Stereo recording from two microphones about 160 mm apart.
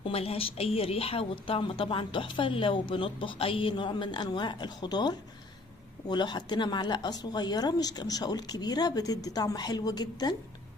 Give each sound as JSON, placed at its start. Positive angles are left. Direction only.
{"t": 0.0, "sound": "a woman's voice", "side_deg": 35}